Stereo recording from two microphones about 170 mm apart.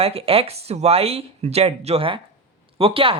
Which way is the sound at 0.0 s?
35° right (ahead or behind).